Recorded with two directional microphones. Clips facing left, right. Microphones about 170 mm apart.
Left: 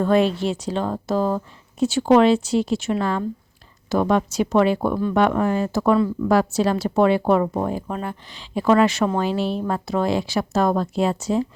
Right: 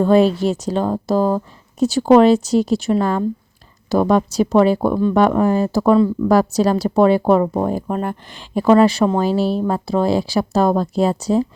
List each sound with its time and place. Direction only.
0.0 s speech: 35° right (ahead or behind)
7.7 s speech: 45° right (ahead or behind)
8.6 s speech: 35° right (ahead or behind)